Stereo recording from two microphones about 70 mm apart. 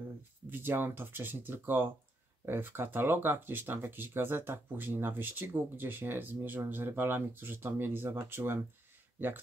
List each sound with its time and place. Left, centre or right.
0.5 s speech: right